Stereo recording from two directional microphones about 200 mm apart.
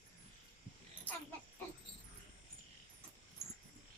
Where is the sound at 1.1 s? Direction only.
10° left (ahead or behind).